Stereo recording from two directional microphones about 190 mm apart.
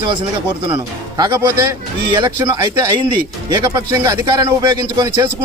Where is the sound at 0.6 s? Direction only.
25° right (ahead or behind).